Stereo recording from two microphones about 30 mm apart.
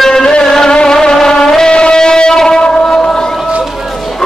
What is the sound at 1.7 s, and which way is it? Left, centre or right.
Music, left.